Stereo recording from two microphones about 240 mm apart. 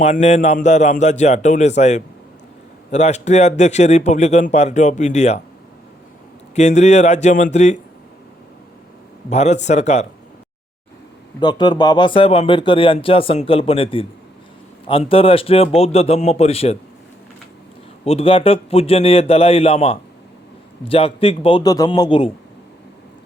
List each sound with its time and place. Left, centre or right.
0.0 s speech: left
6.6 s speech: left
9.3 s speech: left
11.3 s speech: centre
18.0 s speech: left